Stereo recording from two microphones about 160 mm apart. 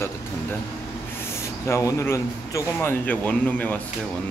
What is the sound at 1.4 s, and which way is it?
Speech, 20° left (ahead or behind).